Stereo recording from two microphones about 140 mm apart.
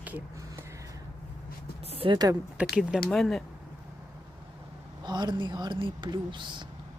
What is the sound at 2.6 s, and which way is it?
Speech, 5° right (ahead or behind).